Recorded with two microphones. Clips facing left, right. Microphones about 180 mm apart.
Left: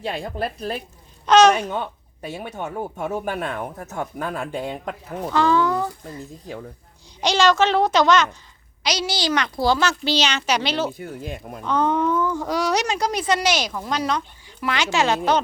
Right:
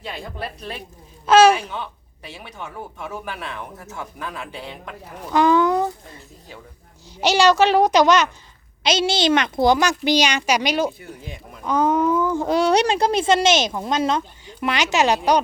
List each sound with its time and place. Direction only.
0.0 s speech: 50° left (ahead or behind)
1.3 s a woman's voice: 10° right (ahead or behind)
1.7 s speech: 45° left (ahead or behind)
5.3 s a woman's voice: 15° right (ahead or behind)
7.2 s a woman's voice: 10° right (ahead or behind)
11.0 s speech: 50° left (ahead or behind)
11.6 s speech: 10° right (ahead or behind)
12.3 s speech: 25° right (ahead or behind)